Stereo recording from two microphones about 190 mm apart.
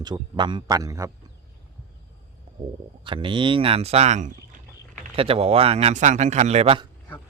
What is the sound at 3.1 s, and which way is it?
A man's voice, 25° right (ahead or behind).